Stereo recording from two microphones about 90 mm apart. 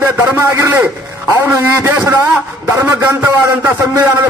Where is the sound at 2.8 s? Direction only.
15° right (ahead or behind).